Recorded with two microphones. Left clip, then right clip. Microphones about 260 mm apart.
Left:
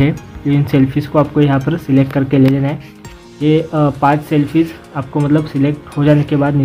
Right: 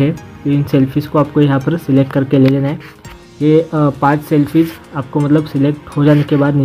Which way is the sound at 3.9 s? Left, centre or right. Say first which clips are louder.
Even; centre.